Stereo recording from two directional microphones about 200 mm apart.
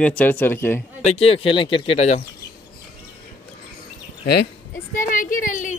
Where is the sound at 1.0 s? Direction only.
30° left (ahead or behind).